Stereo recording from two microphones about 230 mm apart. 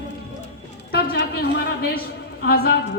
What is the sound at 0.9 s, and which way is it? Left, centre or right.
A woman's voice, left.